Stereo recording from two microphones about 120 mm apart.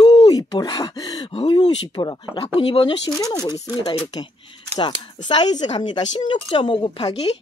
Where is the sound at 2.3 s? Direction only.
50° left (ahead or behind).